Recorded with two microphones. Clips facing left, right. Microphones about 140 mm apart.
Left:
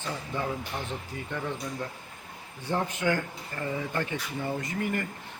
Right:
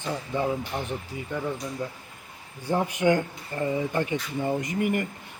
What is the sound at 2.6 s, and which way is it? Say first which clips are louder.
A man's voice: right 5 dB; 15° right (ahead or behind).